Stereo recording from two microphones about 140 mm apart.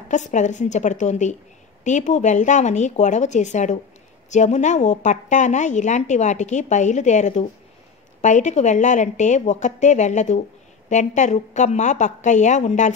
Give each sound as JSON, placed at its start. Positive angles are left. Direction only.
{"t": 0.1, "sound": "a woman's voice", "side_deg": 60}